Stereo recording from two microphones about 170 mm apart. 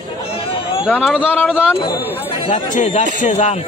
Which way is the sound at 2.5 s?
45° left (ahead or behind).